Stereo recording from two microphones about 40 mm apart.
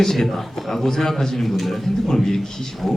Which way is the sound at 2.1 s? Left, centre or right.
Centre.